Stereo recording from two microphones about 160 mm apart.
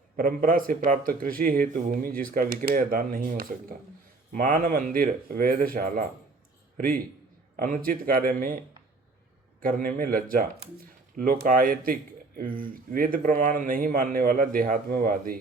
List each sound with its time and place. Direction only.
0.2 s a man's voice: 60° right (ahead or behind)
9.6 s speech: 65° right (ahead or behind)